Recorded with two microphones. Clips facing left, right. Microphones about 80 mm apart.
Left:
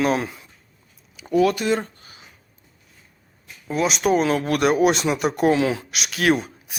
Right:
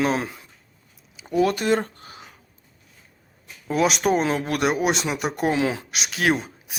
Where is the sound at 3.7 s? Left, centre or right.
Right.